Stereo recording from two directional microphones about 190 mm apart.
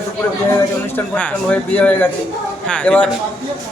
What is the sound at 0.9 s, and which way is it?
Speech, 10° left (ahead or behind).